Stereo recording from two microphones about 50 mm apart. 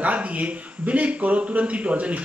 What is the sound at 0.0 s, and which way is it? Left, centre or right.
A man's voice, right.